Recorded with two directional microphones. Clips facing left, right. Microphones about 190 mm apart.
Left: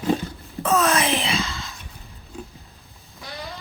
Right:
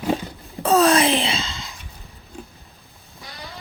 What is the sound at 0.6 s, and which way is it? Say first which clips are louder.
Wail: right 4 dB; 30° right (ahead or behind).